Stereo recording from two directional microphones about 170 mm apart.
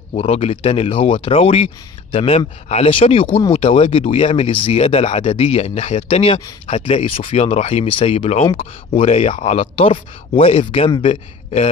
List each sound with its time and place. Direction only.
0.1 s speech: 35° left (ahead or behind)